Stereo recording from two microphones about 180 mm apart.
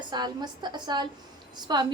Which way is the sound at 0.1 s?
25° right (ahead or behind).